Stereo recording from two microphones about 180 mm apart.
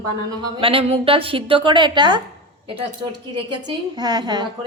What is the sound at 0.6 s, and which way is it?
A woman's voice, 30° right (ahead or behind).